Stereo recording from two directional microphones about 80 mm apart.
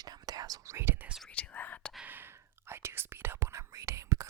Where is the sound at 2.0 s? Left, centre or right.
Right.